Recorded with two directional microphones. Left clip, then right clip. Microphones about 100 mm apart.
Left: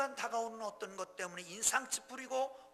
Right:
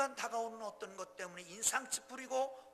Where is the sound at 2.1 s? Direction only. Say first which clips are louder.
Even; 5° right (ahead or behind).